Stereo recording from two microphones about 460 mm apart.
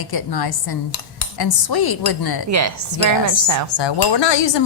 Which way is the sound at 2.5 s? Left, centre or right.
Right.